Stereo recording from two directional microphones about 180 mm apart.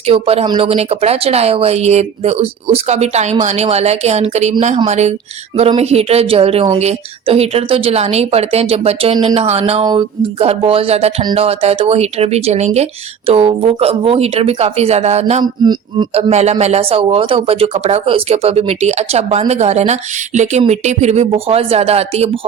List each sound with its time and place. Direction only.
0.0 s speech: 35° right (ahead or behind)
15.6 s music: 25° right (ahead or behind)
16.3 s speech: 40° right (ahead or behind)